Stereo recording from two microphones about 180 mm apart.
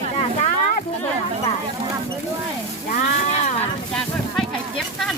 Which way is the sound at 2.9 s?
40° left (ahead or behind).